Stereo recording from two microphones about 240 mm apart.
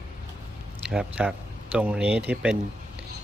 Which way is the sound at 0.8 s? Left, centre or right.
Centre.